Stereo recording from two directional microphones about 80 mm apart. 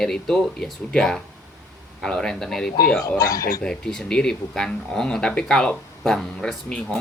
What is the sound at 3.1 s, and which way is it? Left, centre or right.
Speech, left.